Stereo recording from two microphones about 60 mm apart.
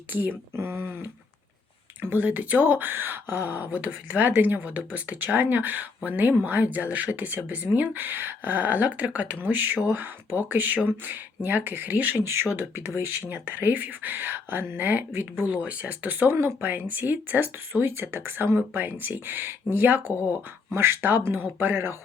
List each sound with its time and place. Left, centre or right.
0.1 s speech: right
2.0 s speech: right
12.2 s speech: right
16.3 s speech: right
18.7 s speech: right